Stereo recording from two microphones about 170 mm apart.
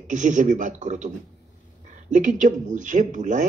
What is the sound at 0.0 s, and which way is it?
Speech, 45° right (ahead or behind).